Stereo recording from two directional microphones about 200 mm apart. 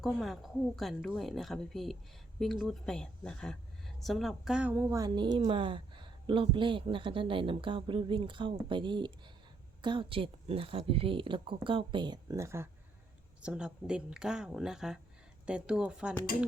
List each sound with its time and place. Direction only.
0.0 s a woman's voice: centre (ahead or behind)